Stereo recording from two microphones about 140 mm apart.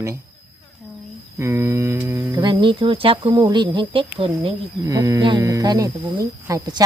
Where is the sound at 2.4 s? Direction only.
35° right (ahead or behind).